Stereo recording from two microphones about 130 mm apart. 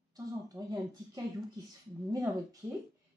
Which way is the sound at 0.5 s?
30° right (ahead or behind).